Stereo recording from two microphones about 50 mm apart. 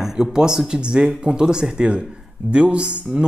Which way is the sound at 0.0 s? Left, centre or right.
Centre.